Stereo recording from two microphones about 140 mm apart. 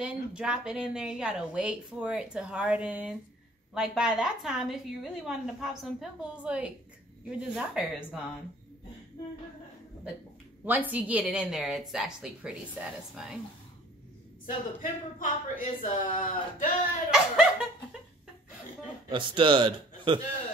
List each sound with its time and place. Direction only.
0.0 s a woman's voice: 5° right (ahead or behind)
10.6 s a woman's voice: 10° right (ahead or behind)
14.4 s speech: 70° left (ahead or behind)
17.1 s a woman's voice: 5° right (ahead or behind)
19.0 s a man's voice: 35° right (ahead or behind)